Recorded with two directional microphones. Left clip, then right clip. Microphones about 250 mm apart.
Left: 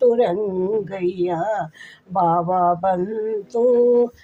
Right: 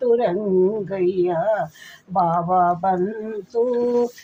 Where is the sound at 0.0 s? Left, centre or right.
Left.